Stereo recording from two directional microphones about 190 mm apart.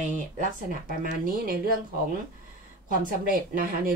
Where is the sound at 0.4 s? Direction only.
45° right (ahead or behind).